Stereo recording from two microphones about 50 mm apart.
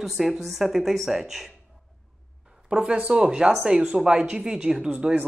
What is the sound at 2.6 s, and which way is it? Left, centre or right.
Speech, centre.